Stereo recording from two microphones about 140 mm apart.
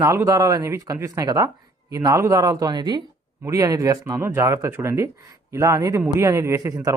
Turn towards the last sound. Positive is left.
turn(degrees=-20)  # may be behind; listen again after turning